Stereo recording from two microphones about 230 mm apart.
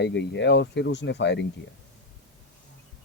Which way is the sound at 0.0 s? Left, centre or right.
Left.